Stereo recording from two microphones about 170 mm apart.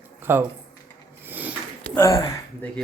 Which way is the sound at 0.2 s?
10° right (ahead or behind).